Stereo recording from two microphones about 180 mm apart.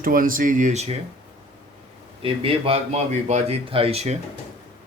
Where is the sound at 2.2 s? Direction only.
30° right (ahead or behind).